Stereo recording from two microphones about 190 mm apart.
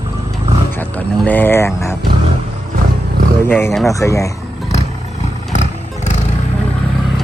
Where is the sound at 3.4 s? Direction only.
10° left (ahead or behind).